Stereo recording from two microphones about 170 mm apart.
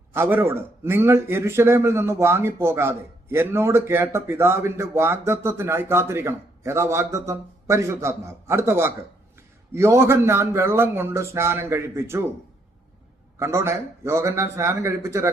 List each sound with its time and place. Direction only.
0.1 s a man's voice: 15° right (ahead or behind)
13.4 s a man's voice: 15° right (ahead or behind)